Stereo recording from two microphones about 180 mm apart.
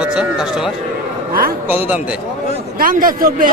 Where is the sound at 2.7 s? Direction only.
50° right (ahead or behind).